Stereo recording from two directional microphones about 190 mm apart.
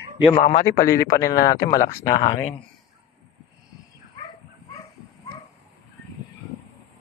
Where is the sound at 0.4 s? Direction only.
40° left (ahead or behind).